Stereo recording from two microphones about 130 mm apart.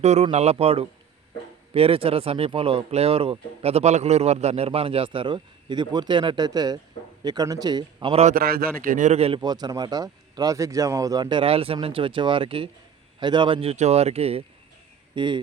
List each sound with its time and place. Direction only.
0.0 s a man's voice: 60° right (ahead or behind); by 8.1 s 30° right (ahead or behind)
8.1 s a man's voice: 65° right (ahead or behind)
8.8 s a man's voice: 85° right; by 9.4 s 55° right (ahead or behind)
9.4 s speech: 30° right (ahead or behind); by 14.4 s 50° right (ahead or behind)
15.1 s speech: 35° right (ahead or behind)